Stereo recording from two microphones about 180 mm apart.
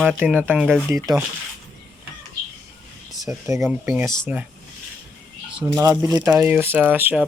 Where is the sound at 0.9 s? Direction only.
20° right (ahead or behind).